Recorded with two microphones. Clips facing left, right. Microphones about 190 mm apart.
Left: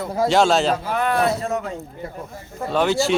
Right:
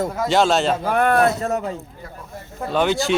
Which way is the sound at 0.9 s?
50° right (ahead or behind).